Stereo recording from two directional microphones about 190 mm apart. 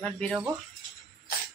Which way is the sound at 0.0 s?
Centre (ahead or behind).